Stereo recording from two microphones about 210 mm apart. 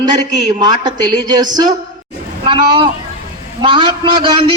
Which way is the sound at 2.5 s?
25° right (ahead or behind).